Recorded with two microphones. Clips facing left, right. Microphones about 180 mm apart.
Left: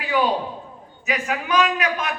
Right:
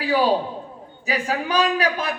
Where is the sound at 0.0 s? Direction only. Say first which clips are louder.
Right 2 dB; 30° right (ahead or behind).